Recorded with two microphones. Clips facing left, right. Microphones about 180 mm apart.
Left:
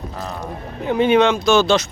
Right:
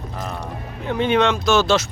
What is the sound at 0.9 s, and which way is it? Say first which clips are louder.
Speech: left 4 dB; 5° left (ahead or behind).